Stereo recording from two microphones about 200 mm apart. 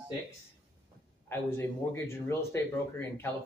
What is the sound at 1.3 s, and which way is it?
Speech, 10° left (ahead or behind).